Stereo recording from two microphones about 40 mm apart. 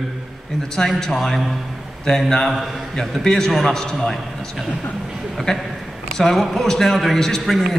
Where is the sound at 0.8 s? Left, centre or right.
Centre.